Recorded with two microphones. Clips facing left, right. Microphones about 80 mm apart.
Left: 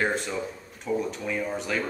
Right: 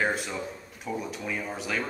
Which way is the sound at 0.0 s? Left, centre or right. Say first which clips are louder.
Left 1 dB; centre.